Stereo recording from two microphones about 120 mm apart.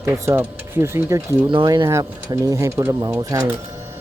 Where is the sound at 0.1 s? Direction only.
20° right (ahead or behind).